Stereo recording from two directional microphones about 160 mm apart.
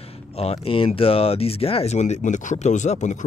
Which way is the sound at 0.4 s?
35° left (ahead or behind).